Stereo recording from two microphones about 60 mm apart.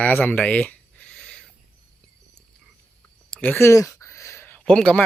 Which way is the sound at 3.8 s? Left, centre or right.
Left.